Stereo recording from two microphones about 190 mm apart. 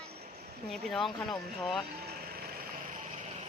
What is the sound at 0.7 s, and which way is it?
Speech, centre (ahead or behind).